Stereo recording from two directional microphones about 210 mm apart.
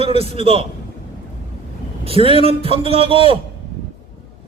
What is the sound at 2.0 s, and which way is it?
Speech, 25° right (ahead or behind).